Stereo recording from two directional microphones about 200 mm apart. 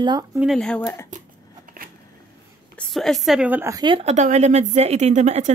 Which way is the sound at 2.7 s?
Centre (ahead or behind).